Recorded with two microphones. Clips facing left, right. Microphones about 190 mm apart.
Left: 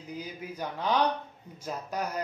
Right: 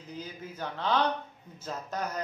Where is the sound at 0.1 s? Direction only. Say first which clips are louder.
Left 2 dB; 10° left (ahead or behind).